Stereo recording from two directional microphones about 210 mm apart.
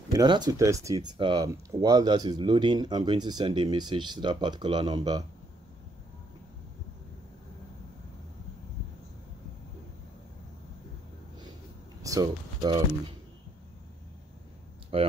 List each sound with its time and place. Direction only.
0.1 s speech: 20° right (ahead or behind)
12.0 s speech: 15° right (ahead or behind)
14.9 s speech: 25° right (ahead or behind)